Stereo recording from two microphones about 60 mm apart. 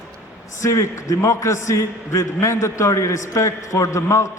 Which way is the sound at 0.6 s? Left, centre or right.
Left.